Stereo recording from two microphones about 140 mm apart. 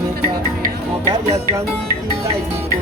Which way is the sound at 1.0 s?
20° right (ahead or behind).